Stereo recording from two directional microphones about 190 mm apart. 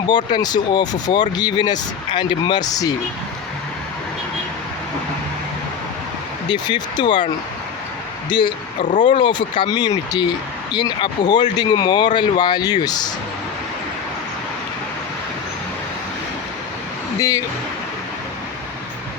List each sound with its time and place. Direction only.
0.3 s speech: 20° left (ahead or behind)
6.5 s speech: 25° left (ahead or behind)
8.3 s speech: 25° left (ahead or behind)
8.8 s speech: 45° left (ahead or behind)
9.0 s speech: 25° left (ahead or behind)
17.2 s speech: 15° left (ahead or behind)